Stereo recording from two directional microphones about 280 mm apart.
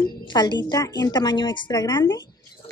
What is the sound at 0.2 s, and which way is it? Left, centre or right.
A woman's voice, centre.